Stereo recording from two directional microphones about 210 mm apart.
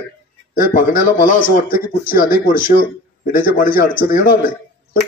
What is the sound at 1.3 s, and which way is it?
A man's voice, 40° left (ahead or behind).